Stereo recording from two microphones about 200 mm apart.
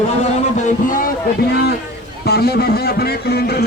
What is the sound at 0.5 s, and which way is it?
Speech, 40° left (ahead or behind).